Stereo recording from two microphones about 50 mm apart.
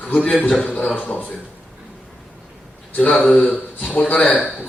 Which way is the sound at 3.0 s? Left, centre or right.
Left.